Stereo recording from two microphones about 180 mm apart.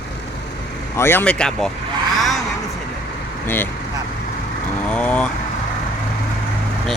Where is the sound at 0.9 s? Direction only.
15° left (ahead or behind).